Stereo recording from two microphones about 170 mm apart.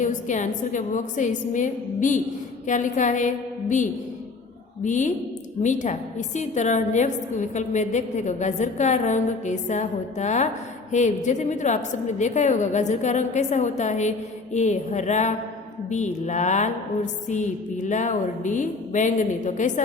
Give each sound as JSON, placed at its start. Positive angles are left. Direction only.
{"t": 0.0, "sound": "a woman's voice", "side_deg": 45}
{"t": 4.8, "sound": "a woman's voice", "side_deg": 45}